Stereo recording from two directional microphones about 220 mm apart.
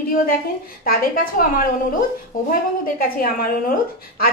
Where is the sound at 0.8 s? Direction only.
40° left (ahead or behind).